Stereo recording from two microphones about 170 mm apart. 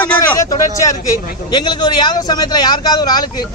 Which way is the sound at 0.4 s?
20° left (ahead or behind).